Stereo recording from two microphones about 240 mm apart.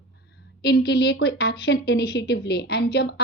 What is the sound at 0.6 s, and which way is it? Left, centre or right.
A woman's voice, left.